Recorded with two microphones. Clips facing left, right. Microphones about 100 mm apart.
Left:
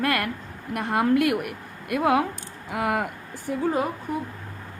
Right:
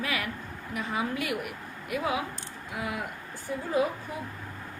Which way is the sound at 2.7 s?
90° left.